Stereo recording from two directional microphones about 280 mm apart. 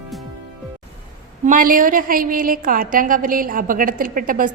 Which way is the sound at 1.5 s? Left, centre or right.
Right.